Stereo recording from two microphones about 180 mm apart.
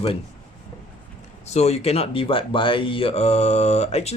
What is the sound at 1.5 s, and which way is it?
Speech, 35° left (ahead or behind).